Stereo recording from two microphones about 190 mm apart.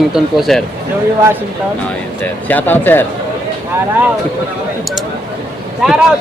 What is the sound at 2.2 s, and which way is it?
Speech, 10° left (ahead or behind).